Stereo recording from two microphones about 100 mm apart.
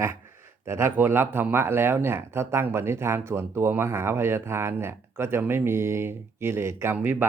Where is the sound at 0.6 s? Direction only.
25° right (ahead or behind).